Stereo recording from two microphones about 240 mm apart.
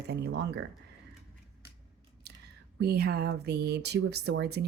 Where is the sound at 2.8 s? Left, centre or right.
Right.